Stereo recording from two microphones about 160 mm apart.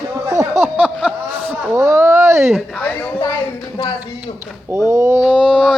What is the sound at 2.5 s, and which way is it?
Speech, 5° left (ahead or behind).